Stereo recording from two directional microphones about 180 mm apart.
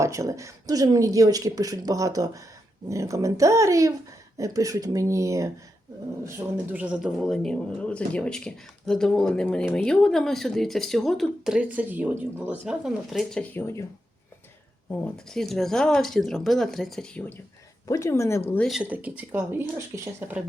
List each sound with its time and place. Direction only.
0.0 s speech: 15° right (ahead or behind); by 13.8 s 15° left (ahead or behind)
14.8 s speech: centre (ahead or behind)
17.8 s speech: 15° left (ahead or behind)
18.7 s speech: 5° right (ahead or behind)